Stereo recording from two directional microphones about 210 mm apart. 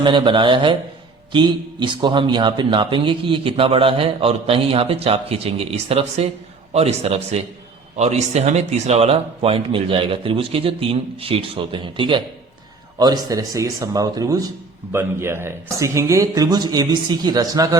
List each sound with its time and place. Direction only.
0.0 s a man's voice: 20° right (ahead or behind)